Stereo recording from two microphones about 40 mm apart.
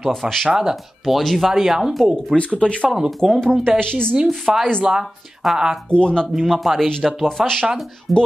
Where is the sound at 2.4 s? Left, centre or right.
Left.